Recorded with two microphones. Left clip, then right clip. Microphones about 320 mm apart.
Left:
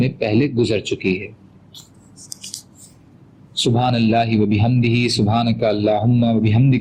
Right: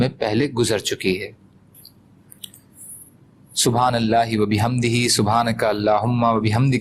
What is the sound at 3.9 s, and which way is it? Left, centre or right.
A man's voice, centre.